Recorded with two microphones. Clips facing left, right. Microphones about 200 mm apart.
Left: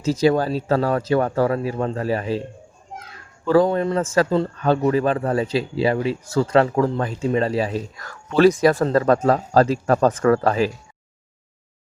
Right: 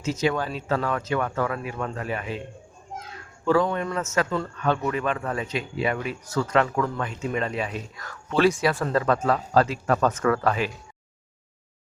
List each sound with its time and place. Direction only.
0.0 s speech: 35° left (ahead or behind)
3.5 s speech: 35° left (ahead or behind)